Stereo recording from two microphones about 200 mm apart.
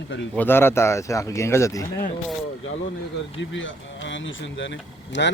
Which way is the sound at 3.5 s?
70° left (ahead or behind).